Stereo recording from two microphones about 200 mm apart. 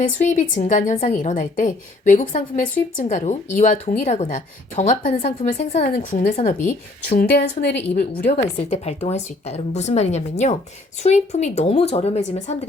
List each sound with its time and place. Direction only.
0.2 s a woman's voice: 40° left (ahead or behind)
7.8 s a woman's voice: 35° left (ahead or behind)